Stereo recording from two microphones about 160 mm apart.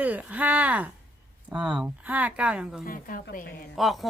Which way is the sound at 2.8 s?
60° left (ahead or behind).